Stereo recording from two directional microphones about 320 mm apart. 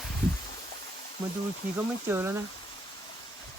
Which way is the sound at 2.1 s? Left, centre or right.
Centre.